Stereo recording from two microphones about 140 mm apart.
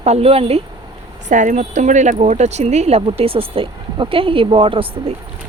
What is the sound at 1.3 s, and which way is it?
Speech, 65° right (ahead or behind).